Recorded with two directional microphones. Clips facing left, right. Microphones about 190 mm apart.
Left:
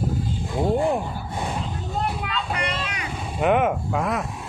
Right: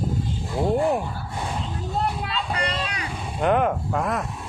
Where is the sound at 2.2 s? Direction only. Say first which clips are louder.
Even; 35° right (ahead or behind).